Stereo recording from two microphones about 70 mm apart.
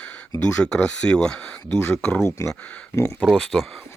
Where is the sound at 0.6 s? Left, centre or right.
Centre.